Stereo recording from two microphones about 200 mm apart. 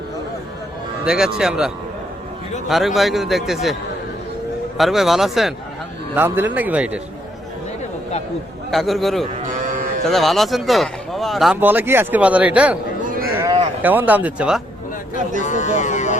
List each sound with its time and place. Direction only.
1.0 s speech: 5° right (ahead or behind)
4.8 s a man's voice: centre (ahead or behind)
8.7 s speech: centre (ahead or behind)
9.5 s livestock: 40° right (ahead or behind)
10.0 s speech: centre (ahead or behind)
13.0 s a sound: 45° right (ahead or behind)
13.8 s a man's voice: 10° right (ahead or behind)
15.4 s speech: 35° left (ahead or behind)